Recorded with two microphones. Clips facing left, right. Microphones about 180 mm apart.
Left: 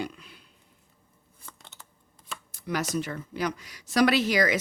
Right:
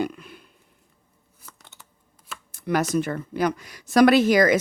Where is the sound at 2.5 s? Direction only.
55° right (ahead or behind).